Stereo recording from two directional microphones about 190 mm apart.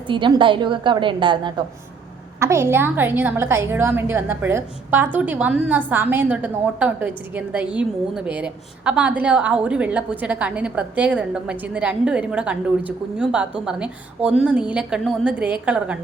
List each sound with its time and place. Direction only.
0.1 s a woman's voice: 25° right (ahead or behind); by 16.0 s 5° right (ahead or behind)